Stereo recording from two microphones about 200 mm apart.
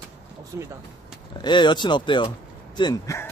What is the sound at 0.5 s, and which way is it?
Speech, 15° right (ahead or behind).